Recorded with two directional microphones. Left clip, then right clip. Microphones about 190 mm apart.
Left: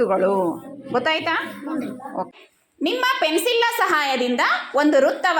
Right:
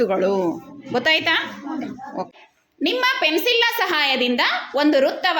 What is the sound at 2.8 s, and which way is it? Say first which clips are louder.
A woman's voice: right 1 dB; centre (ahead or behind).